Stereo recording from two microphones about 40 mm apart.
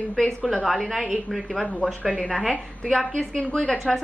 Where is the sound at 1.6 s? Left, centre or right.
Left.